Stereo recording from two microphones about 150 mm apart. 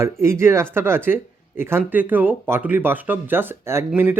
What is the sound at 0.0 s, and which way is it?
Speech, 20° right (ahead or behind).